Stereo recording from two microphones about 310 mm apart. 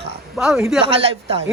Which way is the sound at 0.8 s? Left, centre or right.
Centre.